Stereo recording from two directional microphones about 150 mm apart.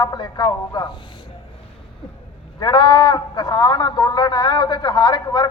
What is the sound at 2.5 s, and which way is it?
A man's voice, 30° left (ahead or behind).